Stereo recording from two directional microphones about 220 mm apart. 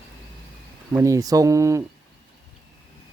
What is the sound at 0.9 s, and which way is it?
Speech, 15° right (ahead or behind).